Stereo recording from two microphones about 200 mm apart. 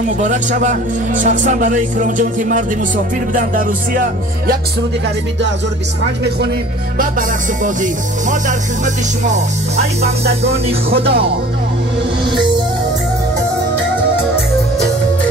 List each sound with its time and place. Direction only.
0.2 s speech: 40° right (ahead or behind)
7.0 s speech: 40° right (ahead or behind)